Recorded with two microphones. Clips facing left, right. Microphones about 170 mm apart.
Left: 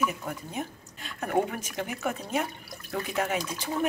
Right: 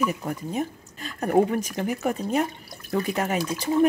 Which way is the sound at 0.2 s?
40° right (ahead or behind).